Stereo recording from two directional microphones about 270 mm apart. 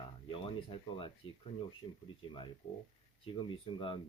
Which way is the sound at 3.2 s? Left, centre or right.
Centre.